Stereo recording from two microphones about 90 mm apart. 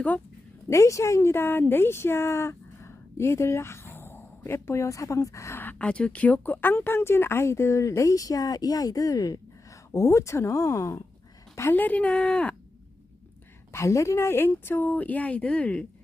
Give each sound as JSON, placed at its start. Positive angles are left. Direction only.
{"t": 0.7, "sound": "speech", "side_deg": 35}
{"t": 5.8, "sound": "speech", "side_deg": 10}
{"t": 9.9, "sound": "speech", "side_deg": 35}
{"t": 13.7, "sound": "speech", "side_deg": 30}